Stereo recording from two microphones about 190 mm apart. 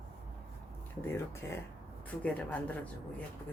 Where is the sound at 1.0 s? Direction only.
10° left (ahead or behind).